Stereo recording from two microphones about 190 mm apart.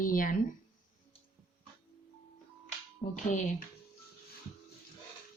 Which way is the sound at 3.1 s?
40° left (ahead or behind).